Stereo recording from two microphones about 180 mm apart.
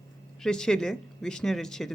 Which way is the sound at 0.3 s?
5° left (ahead or behind).